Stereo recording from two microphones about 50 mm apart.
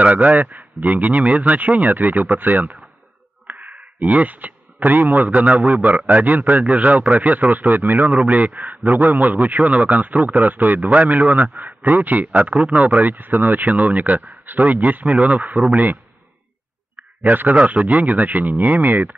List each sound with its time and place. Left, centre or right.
0.0 s speech: right
17.2 s speech: right